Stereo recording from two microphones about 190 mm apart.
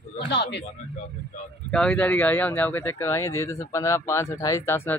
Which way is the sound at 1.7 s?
5° left (ahead or behind).